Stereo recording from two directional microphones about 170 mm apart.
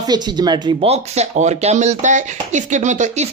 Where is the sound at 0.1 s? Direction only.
25° right (ahead or behind).